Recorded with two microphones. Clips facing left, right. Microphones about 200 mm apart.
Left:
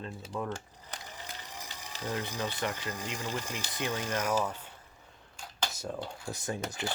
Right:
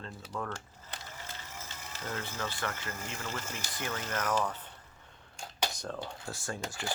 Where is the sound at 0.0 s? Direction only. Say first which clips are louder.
Left 3 dB; 15° left (ahead or behind).